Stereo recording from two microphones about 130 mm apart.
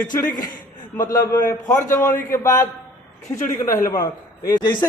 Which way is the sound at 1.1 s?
25° left (ahead or behind).